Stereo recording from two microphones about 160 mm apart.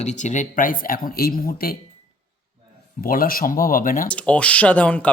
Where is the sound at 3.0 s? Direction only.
60° left (ahead or behind).